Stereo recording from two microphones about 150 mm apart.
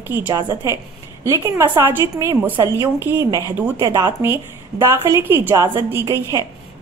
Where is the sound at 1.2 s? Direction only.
20° right (ahead or behind).